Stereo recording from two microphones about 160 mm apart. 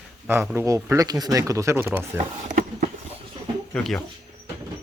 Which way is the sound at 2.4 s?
50° right (ahead or behind).